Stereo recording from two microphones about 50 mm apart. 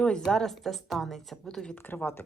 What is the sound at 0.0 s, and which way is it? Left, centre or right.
Speech, centre.